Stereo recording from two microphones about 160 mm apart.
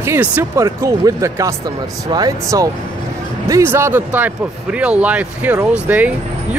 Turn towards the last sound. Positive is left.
turn(degrees=-10)  # may be behind; listen again after turning